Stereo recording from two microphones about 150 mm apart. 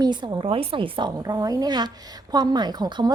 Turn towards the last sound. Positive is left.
turn(degrees=-30)  # may be behind; listen again after turning